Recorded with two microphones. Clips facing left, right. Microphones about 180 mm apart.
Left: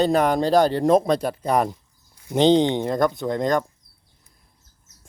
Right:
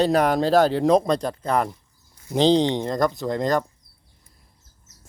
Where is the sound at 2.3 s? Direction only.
Centre (ahead or behind).